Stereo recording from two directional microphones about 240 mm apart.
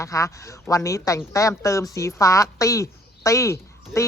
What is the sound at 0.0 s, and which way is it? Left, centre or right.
A woman's voice, centre.